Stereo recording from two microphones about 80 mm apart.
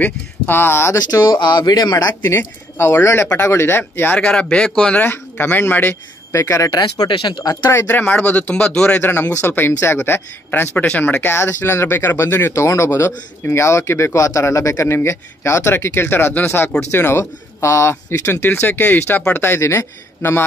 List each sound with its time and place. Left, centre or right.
0.0 s speech: left
1.1 s speech: left
2.2 s speech: left
4.2 s speech: centre
5.0 s speech: left
6.3 s speech: left
6.7 s speech: left
7.1 s speech: left
7.7 s speech: left
12.6 s speech: left